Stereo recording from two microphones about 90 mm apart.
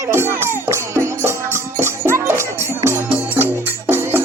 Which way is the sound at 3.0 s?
20° right (ahead or behind).